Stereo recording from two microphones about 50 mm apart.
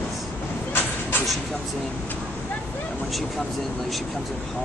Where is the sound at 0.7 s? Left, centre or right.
Left.